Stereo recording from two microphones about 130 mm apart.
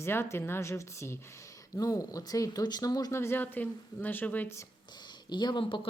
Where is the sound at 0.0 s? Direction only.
20° left (ahead or behind).